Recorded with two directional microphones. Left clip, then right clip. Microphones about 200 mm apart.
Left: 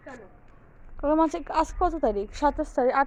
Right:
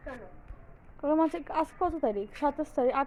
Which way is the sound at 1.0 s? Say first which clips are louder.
Left 4 dB; 35° left (ahead or behind).